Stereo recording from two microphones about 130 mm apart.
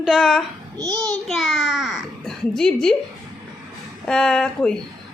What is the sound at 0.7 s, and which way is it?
Speech, 30° right (ahead or behind).